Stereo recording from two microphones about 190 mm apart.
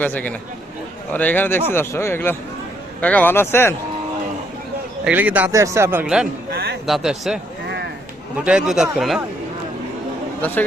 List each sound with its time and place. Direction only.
0.0 s a man's voice: 10° left (ahead or behind)
5.0 s speech: 10° right (ahead or behind)
6.5 s a sound: 55° right (ahead or behind)
6.8 s a man's voice: centre (ahead or behind)
8.4 s a man's voice: 5° right (ahead or behind)